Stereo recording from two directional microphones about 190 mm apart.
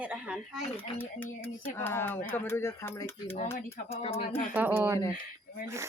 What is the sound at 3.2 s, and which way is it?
Speech, 35° left (ahead or behind).